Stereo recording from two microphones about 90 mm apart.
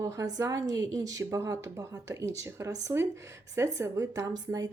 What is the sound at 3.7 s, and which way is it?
Speech, 40° right (ahead or behind).